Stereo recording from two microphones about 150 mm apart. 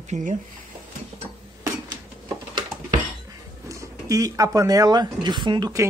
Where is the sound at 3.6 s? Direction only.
20° right (ahead or behind).